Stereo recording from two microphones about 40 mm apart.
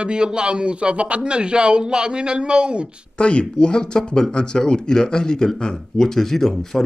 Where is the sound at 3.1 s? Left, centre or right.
Left.